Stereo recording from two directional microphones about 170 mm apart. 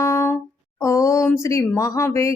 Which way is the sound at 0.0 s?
15° left (ahead or behind).